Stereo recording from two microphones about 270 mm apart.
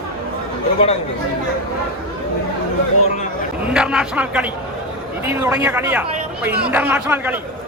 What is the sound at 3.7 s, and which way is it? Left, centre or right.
A man's voice, centre.